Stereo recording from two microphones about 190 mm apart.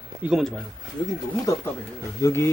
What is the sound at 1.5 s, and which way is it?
Speech, 15° left (ahead or behind).